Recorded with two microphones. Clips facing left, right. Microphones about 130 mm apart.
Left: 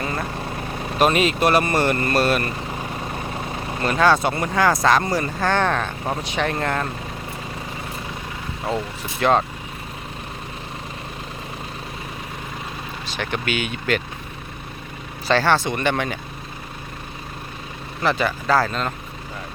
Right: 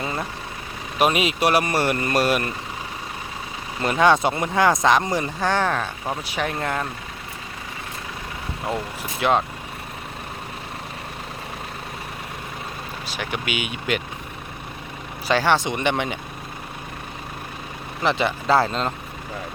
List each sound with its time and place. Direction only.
0.9 s speech: 10° right (ahead or behind)
3.8 s speech: 20° right (ahead or behind)
9.2 s speech: 5° right (ahead or behind)
13.1 s speech: 10° right (ahead or behind)
15.3 s speech: 15° right (ahead or behind)
18.0 s speech: 20° right (ahead or behind)